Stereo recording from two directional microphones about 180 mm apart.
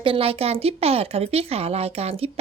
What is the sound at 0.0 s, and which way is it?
Speech, 30° right (ahead or behind).